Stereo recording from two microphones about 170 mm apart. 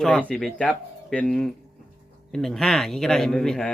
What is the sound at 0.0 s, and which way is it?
Speech, 5° left (ahead or behind).